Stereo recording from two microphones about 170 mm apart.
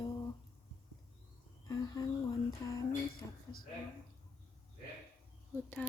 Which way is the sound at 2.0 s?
20° left (ahead or behind).